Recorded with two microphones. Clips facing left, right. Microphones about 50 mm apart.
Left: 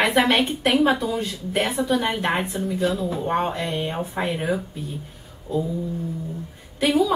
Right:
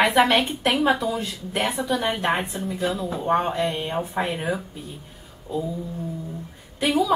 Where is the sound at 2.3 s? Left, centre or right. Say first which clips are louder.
Even; centre.